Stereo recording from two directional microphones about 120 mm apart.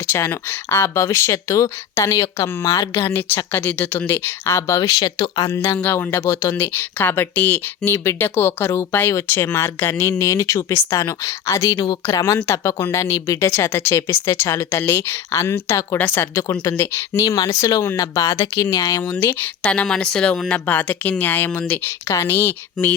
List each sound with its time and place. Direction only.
0.1 s speech: 20° left (ahead or behind); by 5.5 s 35° left (ahead or behind)
5.5 s speech: 15° left (ahead or behind)
19.6 s speech: 10° left (ahead or behind)